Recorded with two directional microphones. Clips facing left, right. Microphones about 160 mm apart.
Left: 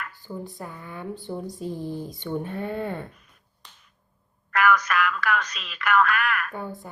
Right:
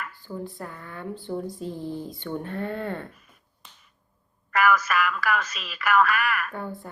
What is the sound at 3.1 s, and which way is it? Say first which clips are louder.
Finger snapping: right 1 dB; 5° right (ahead or behind).